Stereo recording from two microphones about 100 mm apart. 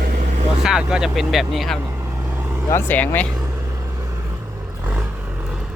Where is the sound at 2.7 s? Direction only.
20° left (ahead or behind).